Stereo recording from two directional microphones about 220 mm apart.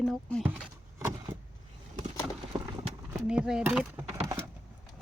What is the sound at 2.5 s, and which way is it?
Clip-clop, 20° right (ahead or behind).